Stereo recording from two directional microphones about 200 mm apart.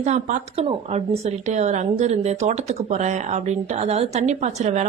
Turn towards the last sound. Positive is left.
turn(degrees=-35)  # may be behind; listen again after turning